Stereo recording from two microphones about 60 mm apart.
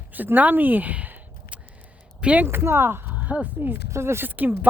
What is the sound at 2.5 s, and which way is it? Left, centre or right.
Speech, right.